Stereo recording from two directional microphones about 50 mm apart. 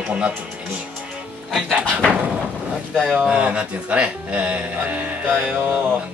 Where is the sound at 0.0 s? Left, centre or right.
Right.